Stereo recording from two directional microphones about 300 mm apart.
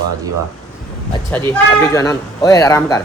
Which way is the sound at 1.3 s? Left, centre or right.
Centre.